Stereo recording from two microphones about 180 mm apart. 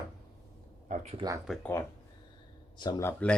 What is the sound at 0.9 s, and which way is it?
Speech, 35° right (ahead or behind).